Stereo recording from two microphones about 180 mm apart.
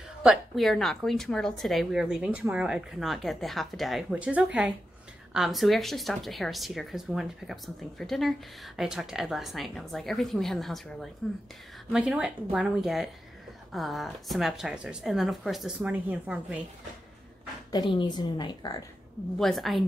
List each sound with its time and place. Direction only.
0.2 s speech: centre (ahead or behind)
17.6 s a woman's voice: 25° left (ahead or behind)
19.3 s speech: centre (ahead or behind)